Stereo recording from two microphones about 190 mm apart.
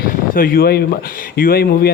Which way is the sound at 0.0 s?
50° left (ahead or behind).